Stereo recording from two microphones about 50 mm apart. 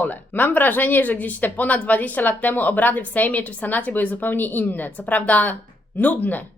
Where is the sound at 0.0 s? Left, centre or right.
Left.